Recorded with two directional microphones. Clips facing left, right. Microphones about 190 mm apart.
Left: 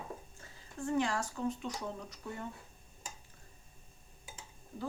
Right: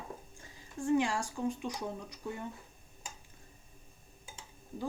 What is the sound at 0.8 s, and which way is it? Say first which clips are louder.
Speech: right 3 dB; 15° right (ahead or behind).